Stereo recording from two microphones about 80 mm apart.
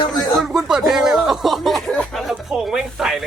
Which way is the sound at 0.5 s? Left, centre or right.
Centre.